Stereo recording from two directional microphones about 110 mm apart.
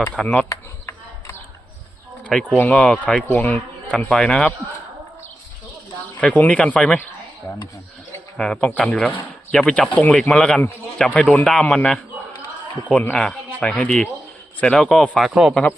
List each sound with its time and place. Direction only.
0.0 s speech: 10° left (ahead or behind)
0.4 s chop: 35° left (ahead or behind)
2.2 s speech: centre (ahead or behind)
2.6 s speech: 15° left (ahead or behind)
6.1 s speech: 15° left (ahead or behind)
8.4 s speech: 10° left (ahead or behind)